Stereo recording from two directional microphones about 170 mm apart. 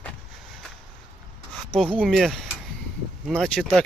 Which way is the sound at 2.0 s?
Centre (ahead or behind).